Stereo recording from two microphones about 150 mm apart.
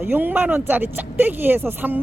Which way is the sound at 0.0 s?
15° right (ahead or behind).